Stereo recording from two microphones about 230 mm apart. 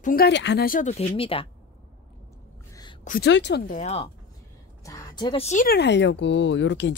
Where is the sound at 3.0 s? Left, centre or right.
Left.